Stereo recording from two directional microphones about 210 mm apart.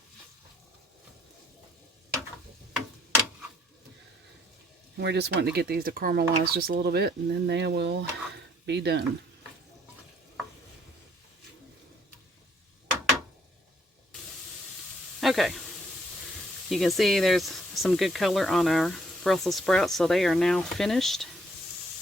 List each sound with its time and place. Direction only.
4.9 s speech: 55° right (ahead or behind)
15.2 s a sound: centre (ahead or behind)
16.6 s speech: centre (ahead or behind)